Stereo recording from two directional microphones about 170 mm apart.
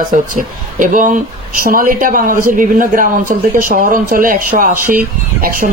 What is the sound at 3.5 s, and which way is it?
A man's voice, 55° right (ahead or behind).